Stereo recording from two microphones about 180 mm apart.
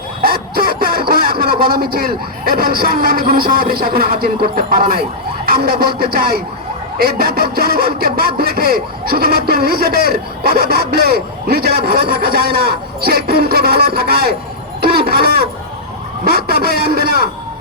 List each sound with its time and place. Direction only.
0.2 s speech: 55° right (ahead or behind)
14.8 s a sound: 60° right (ahead or behind)
16.2 s speech: 60° right (ahead or behind)